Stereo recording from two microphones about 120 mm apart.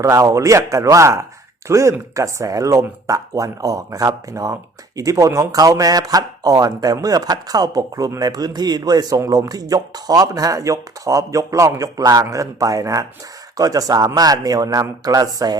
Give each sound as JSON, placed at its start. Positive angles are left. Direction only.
{"t": 0.0, "sound": "speech", "side_deg": -25}